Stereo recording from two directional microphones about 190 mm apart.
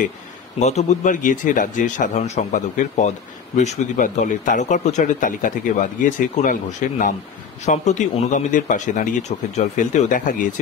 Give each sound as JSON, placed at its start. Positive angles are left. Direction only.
{"t": 0.6, "sound": "a man's voice", "side_deg": 35}